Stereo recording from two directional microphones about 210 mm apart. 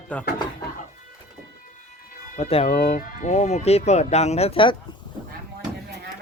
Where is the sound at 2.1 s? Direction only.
40° left (ahead or behind).